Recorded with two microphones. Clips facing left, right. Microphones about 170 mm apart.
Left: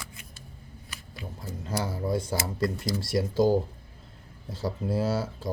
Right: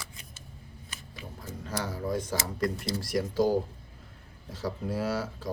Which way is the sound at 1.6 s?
25° left (ahead or behind).